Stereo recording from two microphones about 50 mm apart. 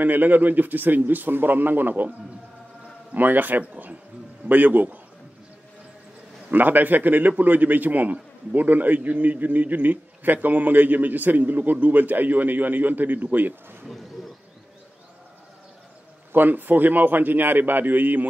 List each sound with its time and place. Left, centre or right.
0.0 s a man's voice: right
3.2 s a man's voice: right
6.5 s a man's voice: right
16.3 s a man's voice: right